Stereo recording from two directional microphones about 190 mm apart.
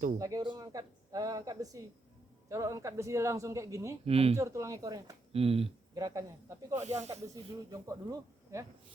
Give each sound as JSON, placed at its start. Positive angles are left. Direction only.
{"t": 0.2, "sound": "speech", "side_deg": -20}
{"t": 4.0, "sound": "speech", "side_deg": -30}
{"t": 4.4, "sound": "speech", "side_deg": -15}
{"t": 5.3, "sound": "speech", "side_deg": -30}
{"t": 6.0, "sound": "speech", "side_deg": -20}
{"t": 6.8, "sound": "speech", "side_deg": -35}
{"t": 7.7, "sound": "speech", "side_deg": -20}